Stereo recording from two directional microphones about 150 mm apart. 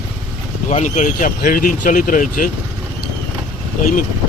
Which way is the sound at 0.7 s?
50° left (ahead or behind).